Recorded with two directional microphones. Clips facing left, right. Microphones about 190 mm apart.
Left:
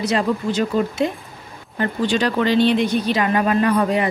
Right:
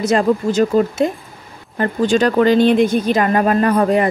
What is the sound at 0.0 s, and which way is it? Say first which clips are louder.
Speech: right 5 dB; 45° right (ahead or behind).